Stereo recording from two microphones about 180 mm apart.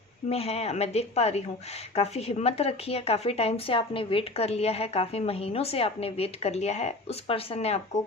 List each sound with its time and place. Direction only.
0.3 s speech: 35° left (ahead or behind)